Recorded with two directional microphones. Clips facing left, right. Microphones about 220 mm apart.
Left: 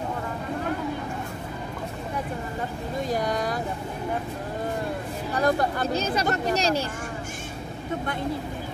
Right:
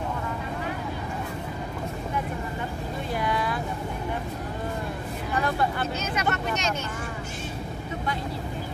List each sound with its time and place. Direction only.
3.1 s vehicle: 40° left (ahead or behind)
5.3 s speech: 40° left (ahead or behind)